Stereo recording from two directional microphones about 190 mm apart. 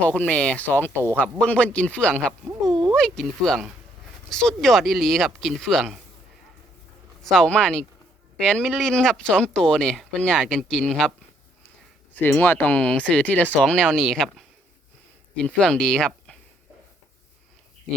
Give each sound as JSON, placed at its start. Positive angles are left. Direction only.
{"t": 0.0, "sound": "speech", "side_deg": 10}
{"t": 2.6, "sound": "a sound", "side_deg": -20}
{"t": 2.9, "sound": "speech", "side_deg": 5}
{"t": 7.3, "sound": "speech", "side_deg": 5}
{"t": 12.1, "sound": "speech", "side_deg": 10}